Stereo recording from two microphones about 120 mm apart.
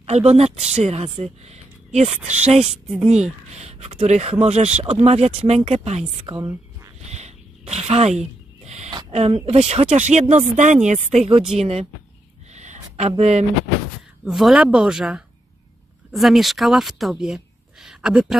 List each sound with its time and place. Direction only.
0.0 s speech: 65° right (ahead or behind)
6.3 s speech: 35° right (ahead or behind)
7.1 s a sound: 65° right (ahead or behind)
9.1 s speech: 60° right (ahead or behind); by 10.2 s 80° right
10.3 s speech: 90° right; by 11.9 s 60° right (ahead or behind)
12.5 s a sound: 75° right (ahead or behind)
13.2 s speech: 60° right (ahead or behind)
14.2 s speech: centre (ahead or behind)